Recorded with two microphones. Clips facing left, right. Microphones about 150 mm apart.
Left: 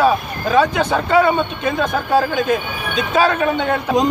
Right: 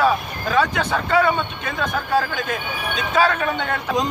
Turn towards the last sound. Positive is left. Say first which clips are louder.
# left 5 dB
turn(degrees=20)  # may be behind; listen again after turning